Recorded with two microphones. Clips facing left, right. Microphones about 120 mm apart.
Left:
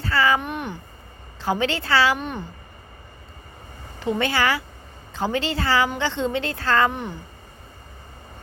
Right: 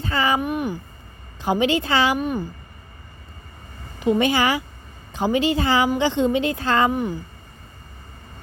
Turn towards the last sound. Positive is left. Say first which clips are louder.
# right 7 dB
turn(degrees=-5)  # may be behind; listen again after turning